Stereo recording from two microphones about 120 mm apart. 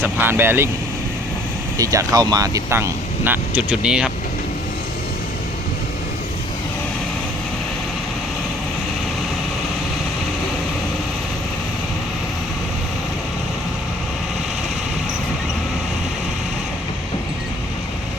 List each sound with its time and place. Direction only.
0.0 s speech: 20° right (ahead or behind)
1.8 s speech: 30° right (ahead or behind); by 4.1 s 5° right (ahead or behind)